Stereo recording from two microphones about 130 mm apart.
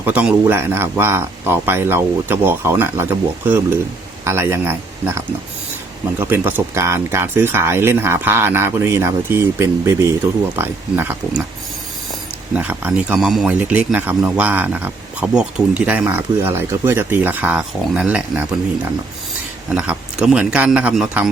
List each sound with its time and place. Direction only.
0.0 s speech: 10° right (ahead or behind)
12.5 s speech: 10° right (ahead or behind)
13.1 s speech: centre (ahead or behind)
19.7 s speech: 10° right (ahead or behind)